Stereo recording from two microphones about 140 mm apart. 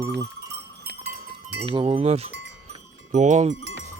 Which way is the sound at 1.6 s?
35° right (ahead or behind).